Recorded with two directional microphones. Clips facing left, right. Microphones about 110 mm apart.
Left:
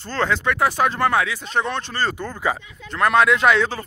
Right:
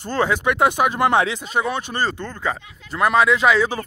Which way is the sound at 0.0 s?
15° right (ahead or behind).